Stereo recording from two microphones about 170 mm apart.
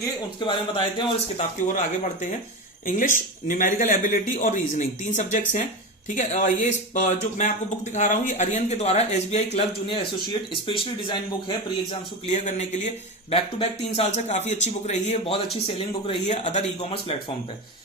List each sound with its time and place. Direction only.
0.3 s speech: 30° left (ahead or behind)
2.8 s speech: 50° left (ahead or behind); by 11.9 s 25° left (ahead or behind)
12.3 s speech: 45° left (ahead or behind)